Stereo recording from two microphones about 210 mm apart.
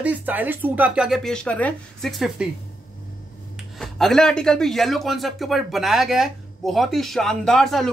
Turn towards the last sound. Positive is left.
turn(degrees=0)  # may be behind; listen again after turning